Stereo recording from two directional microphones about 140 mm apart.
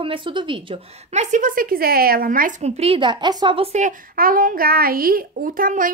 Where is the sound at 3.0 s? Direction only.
35° right (ahead or behind).